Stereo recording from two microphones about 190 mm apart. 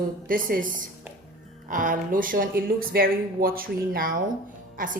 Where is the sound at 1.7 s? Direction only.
45° right (ahead or behind).